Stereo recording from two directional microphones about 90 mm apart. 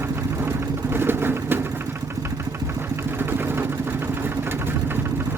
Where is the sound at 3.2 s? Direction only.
25° right (ahead or behind).